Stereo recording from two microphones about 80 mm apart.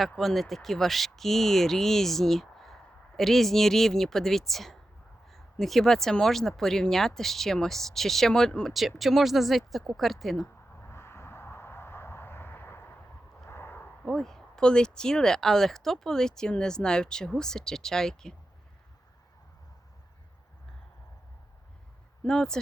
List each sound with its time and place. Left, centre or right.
0.2 s speech: centre
10.8 s vehicle: left
13.4 s a sound: left
14.0 s speech: centre
22.2 s speech: centre